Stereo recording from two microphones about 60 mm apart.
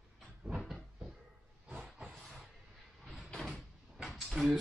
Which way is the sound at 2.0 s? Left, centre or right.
Centre.